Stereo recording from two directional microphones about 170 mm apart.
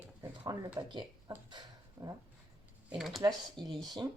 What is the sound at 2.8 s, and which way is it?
Speech, centre (ahead or behind).